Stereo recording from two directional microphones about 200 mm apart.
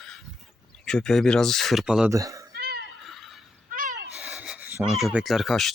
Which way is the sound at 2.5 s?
50° right (ahead or behind).